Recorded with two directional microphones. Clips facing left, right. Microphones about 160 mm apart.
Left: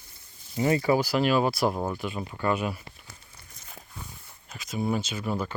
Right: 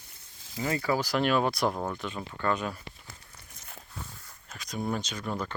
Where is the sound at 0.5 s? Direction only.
25° left (ahead or behind).